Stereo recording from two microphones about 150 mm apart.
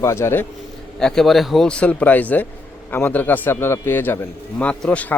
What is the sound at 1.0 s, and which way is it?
A man's voice, 5° left (ahead or behind).